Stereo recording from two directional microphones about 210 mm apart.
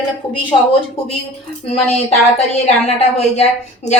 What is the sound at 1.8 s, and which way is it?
A woman's voice, 30° left (ahead or behind).